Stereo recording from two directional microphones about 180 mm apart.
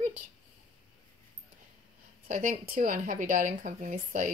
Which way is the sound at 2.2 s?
45° right (ahead or behind).